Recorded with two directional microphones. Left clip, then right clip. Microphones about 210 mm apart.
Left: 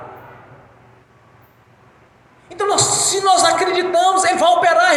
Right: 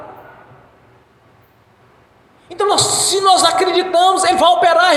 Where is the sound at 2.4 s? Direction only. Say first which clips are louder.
Right 2 dB; 55° right (ahead or behind).